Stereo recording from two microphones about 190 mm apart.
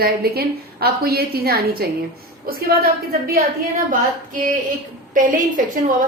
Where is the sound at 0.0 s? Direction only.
55° right (ahead or behind).